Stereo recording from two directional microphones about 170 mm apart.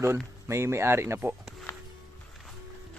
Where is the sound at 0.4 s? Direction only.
15° right (ahead or behind).